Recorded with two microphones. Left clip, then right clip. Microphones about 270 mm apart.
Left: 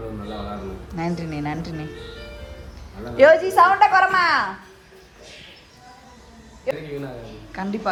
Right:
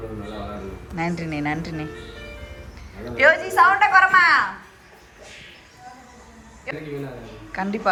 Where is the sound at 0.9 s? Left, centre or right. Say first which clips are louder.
Right 2 dB; centre.